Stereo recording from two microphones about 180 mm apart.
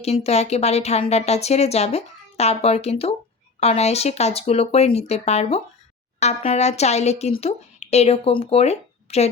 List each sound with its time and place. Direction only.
0.0 s speech: 35° left (ahead or behind)